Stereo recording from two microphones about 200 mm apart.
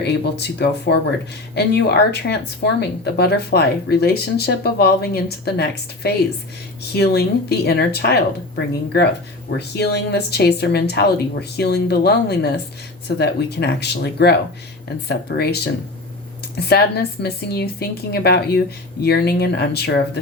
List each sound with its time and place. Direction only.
0.0 s a woman's voice: 55° left (ahead or behind)